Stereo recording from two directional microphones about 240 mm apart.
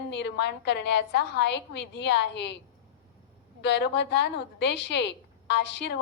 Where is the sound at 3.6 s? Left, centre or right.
Left.